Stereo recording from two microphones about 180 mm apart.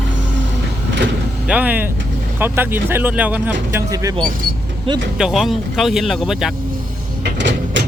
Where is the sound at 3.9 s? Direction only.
20° right (ahead or behind).